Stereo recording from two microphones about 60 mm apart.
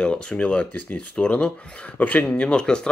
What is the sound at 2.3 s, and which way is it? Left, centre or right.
Speech, centre.